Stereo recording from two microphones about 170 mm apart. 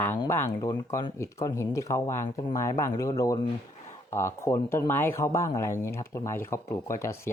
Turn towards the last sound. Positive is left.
turn(degrees=15)  # may be behind; listen again after turning